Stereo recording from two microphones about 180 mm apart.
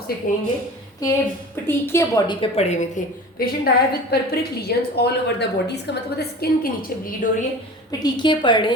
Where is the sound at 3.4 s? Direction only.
55° left (ahead or behind).